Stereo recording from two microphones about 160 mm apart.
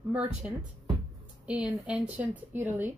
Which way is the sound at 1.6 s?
5° right (ahead or behind).